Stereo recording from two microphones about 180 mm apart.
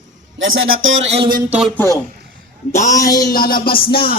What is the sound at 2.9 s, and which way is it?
Speech, 20° left (ahead or behind).